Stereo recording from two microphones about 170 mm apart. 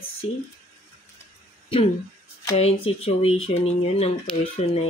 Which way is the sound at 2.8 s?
35° left (ahead or behind).